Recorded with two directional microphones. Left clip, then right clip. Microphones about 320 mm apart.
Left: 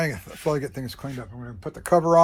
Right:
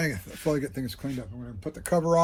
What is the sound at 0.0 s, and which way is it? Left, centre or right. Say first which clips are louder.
Speech: left 3 dB; centre.